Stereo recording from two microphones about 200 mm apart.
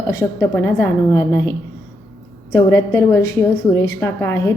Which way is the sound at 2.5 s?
15° left (ahead or behind).